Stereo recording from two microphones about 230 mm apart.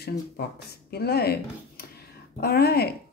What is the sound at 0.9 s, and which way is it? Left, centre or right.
Speech, left.